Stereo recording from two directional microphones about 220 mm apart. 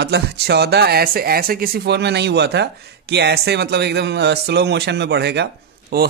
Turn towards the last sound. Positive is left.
turn(degrees=-45)  # may be behind; listen again after turning